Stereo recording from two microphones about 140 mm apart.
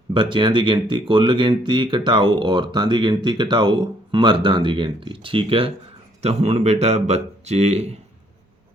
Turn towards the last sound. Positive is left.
turn(degrees=-50)  # may be behind; listen again after turning